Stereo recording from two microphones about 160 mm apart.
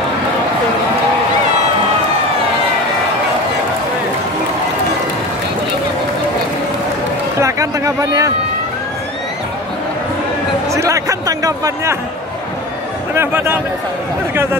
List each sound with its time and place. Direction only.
7.3 s a sound: 20° right (ahead or behind)
10.7 s speech: 20° right (ahead or behind)
13.1 s a man's voice: 15° right (ahead or behind)